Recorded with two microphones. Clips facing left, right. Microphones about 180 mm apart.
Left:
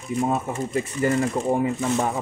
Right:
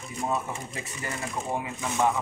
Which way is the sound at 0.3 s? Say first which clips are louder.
Left 7 dB; 50° left (ahead or behind).